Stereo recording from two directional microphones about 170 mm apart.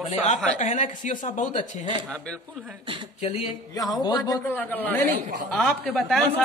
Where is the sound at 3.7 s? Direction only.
20° left (ahead or behind); by 6.2 s centre (ahead or behind).